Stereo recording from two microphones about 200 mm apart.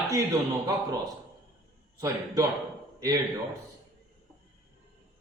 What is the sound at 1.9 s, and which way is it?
Speech, 15° right (ahead or behind).